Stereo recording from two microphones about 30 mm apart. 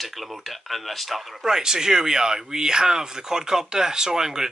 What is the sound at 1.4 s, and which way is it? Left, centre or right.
Speech, centre.